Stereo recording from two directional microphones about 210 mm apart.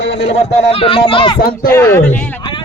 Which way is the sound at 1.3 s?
45° left (ahead or behind).